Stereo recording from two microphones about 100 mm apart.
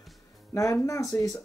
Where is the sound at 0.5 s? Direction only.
30° left (ahead or behind).